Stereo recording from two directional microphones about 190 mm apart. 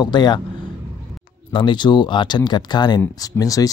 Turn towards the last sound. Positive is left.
turn(degrees=20)  # may be behind; listen again after turning